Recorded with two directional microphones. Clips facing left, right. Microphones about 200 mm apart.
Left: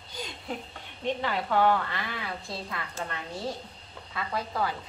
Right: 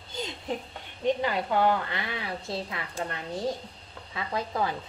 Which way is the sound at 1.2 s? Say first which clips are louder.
Left 3 dB; 15° right (ahead or behind).